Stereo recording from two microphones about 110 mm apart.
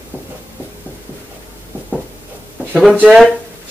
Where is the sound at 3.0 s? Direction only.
5° right (ahead or behind).